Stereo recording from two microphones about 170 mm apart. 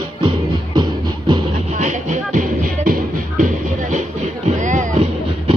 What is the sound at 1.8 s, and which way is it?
Music, 45° right (ahead or behind).